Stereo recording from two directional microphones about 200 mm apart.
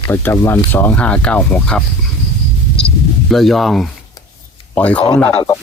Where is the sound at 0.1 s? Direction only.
10° left (ahead or behind).